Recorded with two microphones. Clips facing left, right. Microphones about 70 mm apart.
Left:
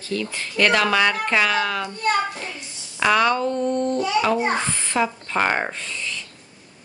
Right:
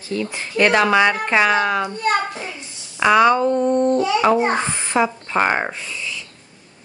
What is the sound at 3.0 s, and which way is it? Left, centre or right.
A child's voice, centre.